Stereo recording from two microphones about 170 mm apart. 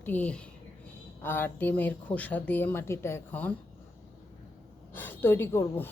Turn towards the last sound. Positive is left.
turn(degrees=15)  # may be behind; listen again after turning